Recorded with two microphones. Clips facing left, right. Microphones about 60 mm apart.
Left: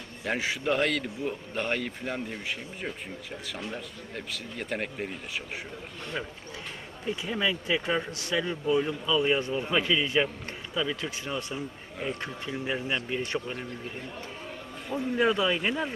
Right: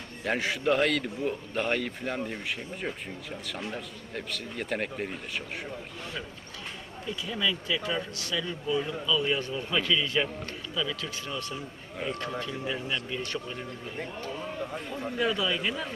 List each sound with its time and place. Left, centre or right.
0.2 s a man's voice: centre
7.1 s speech: left
14.9 s speech: left